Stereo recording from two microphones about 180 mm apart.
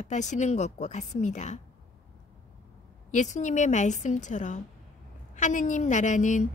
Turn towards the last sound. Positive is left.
turn(degrees=45)  # may be behind; listen again after turning